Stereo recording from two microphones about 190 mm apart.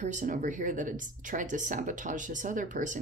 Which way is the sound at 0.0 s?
40° right (ahead or behind).